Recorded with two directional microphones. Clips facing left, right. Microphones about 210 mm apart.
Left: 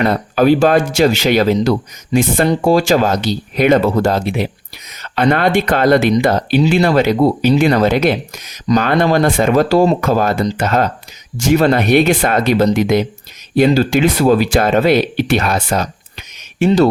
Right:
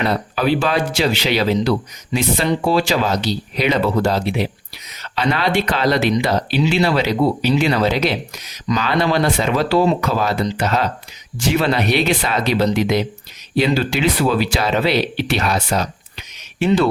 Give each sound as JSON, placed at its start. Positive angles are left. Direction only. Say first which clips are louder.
{"t": 0.0, "sound": "speech", "louder": "left 6 dB", "side_deg": 45}